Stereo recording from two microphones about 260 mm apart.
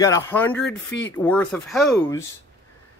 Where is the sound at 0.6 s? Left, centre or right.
Left.